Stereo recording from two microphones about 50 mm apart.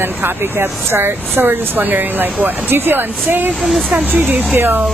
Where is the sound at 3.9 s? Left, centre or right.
Centre.